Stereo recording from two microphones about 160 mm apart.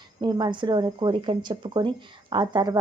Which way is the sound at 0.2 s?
25° right (ahead or behind).